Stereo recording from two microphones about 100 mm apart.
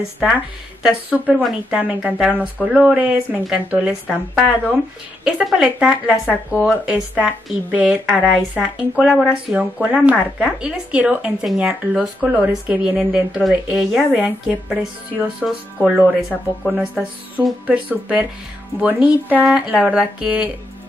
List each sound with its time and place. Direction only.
0.0 s a woman's voice: 10° right (ahead or behind)
8.1 s a woman's voice: centre (ahead or behind)
12.9 s a woman's voice: 5° right (ahead or behind)
19.4 s a woman's voice: 5° right (ahead or behind)